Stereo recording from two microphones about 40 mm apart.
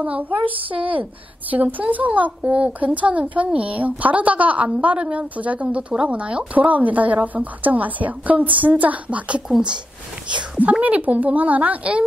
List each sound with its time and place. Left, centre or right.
0.0 s a woman's voice: right
10.6 s speech: right